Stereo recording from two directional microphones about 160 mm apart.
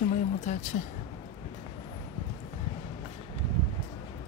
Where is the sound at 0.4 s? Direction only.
50° left (ahead or behind).